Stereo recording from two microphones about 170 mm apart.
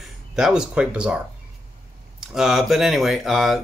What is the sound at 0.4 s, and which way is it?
Speech, 5° right (ahead or behind).